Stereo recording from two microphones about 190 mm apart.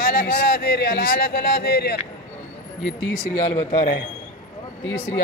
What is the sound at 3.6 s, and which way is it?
Speech, 40° left (ahead or behind).